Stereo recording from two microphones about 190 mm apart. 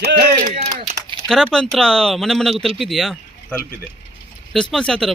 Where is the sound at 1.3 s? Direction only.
Centre (ahead or behind).